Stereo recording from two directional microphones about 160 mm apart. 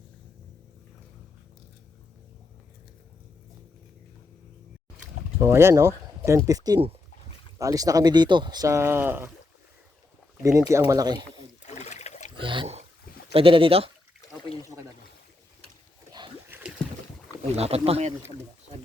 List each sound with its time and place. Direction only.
5.4 s speech: 15° right (ahead or behind)
10.7 s speech: 20° right (ahead or behind)
11.6 s trickle: 45° left (ahead or behind)
12.4 s speech: 30° right (ahead or behind)
14.3 s a sound: 35° left (ahead or behind)
16.5 s rowboat: 5° right (ahead or behind)
17.4 s speech: 40° right (ahead or behind)